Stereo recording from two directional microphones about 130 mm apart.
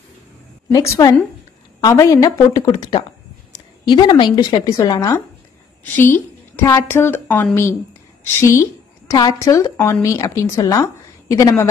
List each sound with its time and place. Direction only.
0.7 s a woman's voice: 30° left (ahead or behind)